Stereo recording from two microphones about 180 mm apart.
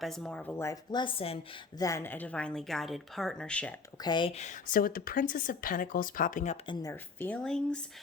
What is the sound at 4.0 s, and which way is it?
A woman's voice, 25° left (ahead or behind).